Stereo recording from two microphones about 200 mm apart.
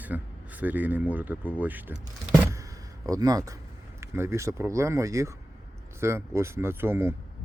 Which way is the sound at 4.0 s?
15° right (ahead or behind).